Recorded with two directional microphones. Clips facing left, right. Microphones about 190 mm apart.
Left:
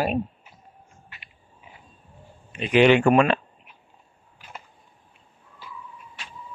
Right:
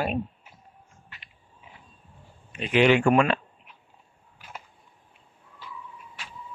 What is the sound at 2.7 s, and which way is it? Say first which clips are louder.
Speech: left 3 dB; 25° left (ahead or behind).